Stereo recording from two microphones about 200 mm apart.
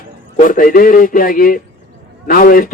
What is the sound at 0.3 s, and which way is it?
A man's voice, 45° left (ahead or behind).